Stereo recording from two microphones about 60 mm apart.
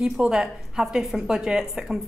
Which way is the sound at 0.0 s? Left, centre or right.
Centre.